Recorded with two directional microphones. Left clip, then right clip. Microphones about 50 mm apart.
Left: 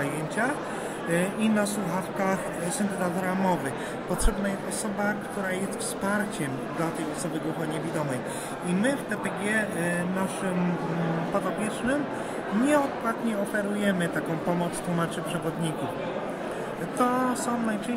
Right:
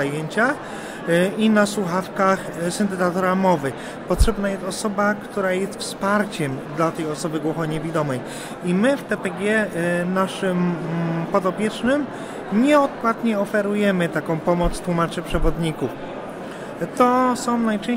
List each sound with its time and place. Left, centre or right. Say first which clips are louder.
0.0 s a sound: right 7 dB; centre
1.1 s a man's voice: right 9 dB; centre
8.8 s a man's voice: right 8 dB; centre
17.0 s a man's voice: right 8 dB; centre